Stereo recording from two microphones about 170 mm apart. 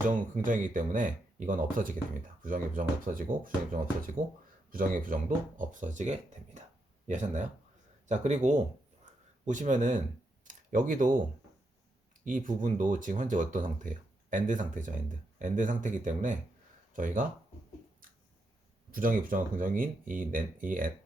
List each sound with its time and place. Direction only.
0.4 s speech: 50° right (ahead or behind)
9.1 s a sound: 45° right (ahead or behind)
9.5 s speech: 45° right (ahead or behind)
10.4 s a sound: 50° right (ahead or behind)
12.2 s speech: 50° right (ahead or behind)
18.9 s speech: 55° right (ahead or behind)